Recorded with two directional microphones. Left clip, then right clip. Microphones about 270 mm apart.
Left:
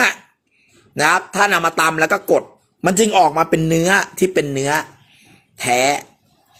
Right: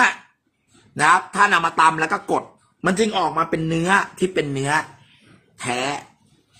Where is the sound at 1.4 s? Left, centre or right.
Centre.